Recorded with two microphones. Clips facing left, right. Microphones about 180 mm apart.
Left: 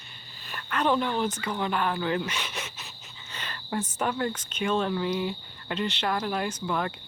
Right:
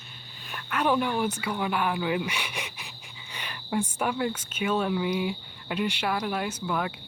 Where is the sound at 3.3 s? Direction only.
10° right (ahead or behind).